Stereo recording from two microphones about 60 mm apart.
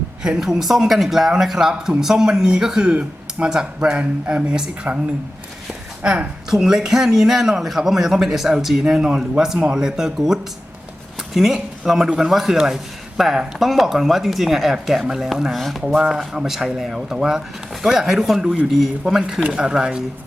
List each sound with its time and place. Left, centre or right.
0.2 s a man's voice: centre
6.0 s a woman's voice: centre
6.5 s a man's voice: centre
16.0 s a man's voice: centre